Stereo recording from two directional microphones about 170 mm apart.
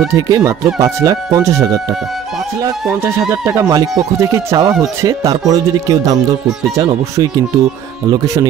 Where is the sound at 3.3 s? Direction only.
15° right (ahead or behind).